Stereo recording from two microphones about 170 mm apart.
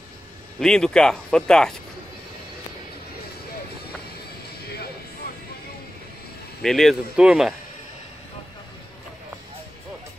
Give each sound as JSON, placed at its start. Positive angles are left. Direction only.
{"t": 0.6, "sound": "speech", "side_deg": 5}
{"t": 4.6, "sound": "music", "side_deg": 70}
{"t": 6.6, "sound": "speech", "side_deg": 0}